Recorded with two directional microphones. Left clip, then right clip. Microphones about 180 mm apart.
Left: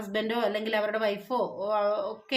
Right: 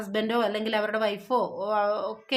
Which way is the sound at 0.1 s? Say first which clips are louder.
Right 2 dB; 35° right (ahead or behind).